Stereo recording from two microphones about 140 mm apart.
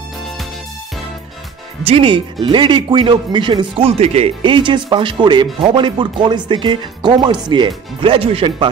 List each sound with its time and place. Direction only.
1.9 s speech: 40° right (ahead or behind)
4.4 s speech: 35° right (ahead or behind)